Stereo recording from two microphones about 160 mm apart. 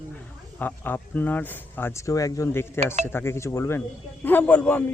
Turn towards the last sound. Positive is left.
turn(degrees=10)  # may be behind; listen again after turning